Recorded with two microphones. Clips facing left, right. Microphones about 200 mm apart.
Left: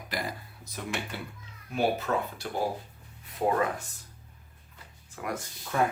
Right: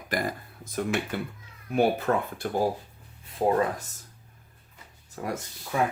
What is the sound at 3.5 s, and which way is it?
Speech, 35° right (ahead or behind).